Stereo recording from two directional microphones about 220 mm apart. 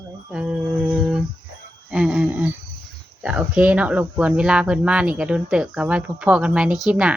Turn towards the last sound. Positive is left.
turn(degrees=-5)  # may be behind; listen again after turning